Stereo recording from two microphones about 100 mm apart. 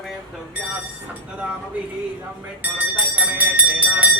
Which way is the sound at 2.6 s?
15° right (ahead or behind).